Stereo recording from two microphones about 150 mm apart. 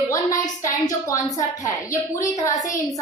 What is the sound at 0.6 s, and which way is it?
Speech, 25° left (ahead or behind).